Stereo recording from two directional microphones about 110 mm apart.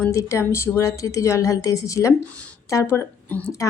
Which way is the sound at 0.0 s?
25° left (ahead or behind).